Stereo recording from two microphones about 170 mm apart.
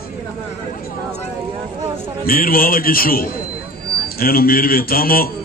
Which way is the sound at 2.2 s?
60° left (ahead or behind).